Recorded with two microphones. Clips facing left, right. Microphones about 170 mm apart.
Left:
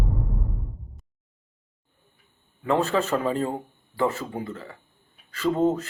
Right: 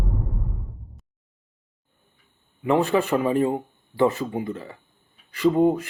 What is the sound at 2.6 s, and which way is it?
Speech, 15° right (ahead or behind).